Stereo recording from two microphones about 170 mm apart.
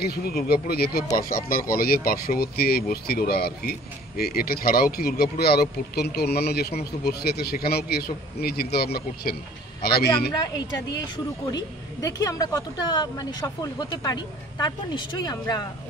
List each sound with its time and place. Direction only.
0.0 s speech: 65° left (ahead or behind)
11.5 s speech: 20° left (ahead or behind)